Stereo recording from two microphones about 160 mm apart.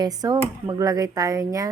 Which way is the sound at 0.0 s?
25° right (ahead or behind).